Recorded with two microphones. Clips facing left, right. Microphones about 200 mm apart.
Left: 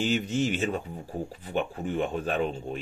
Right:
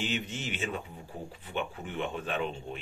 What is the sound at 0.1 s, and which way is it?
A man's voice, 40° left (ahead or behind).